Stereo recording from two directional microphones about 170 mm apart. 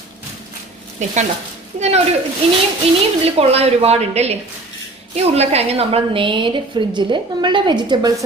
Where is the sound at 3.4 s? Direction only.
35° right (ahead or behind).